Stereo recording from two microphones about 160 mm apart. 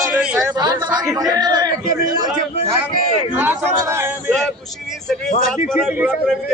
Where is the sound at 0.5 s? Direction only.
25° right (ahead or behind).